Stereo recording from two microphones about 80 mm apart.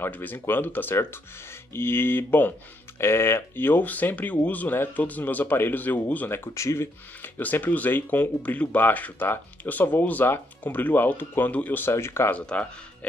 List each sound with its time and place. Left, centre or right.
0.0 s speech: left
6.5 s speech: left
7.2 s speech: left
12.3 s speech: centre